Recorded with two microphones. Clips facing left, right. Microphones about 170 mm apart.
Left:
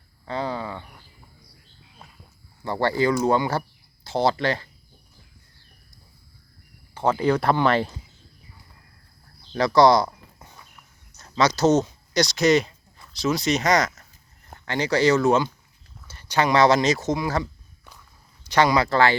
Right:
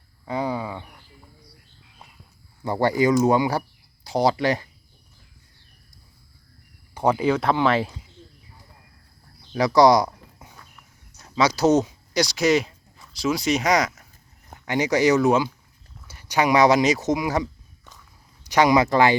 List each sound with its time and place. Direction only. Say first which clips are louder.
0.3 s a sound: right 2 dB; 10° right (ahead or behind)
2.6 s speech: right 2 dB; 15° right (ahead or behind)
6.9 s speech: right 1 dB; 15° right (ahead or behind)
9.5 s speech: right 1 dB; 10° right (ahead or behind)
10.1 s a sound: right 1 dB; 5° right (ahead or behind)
11.2 s speech: even; 10° right (ahead or behind)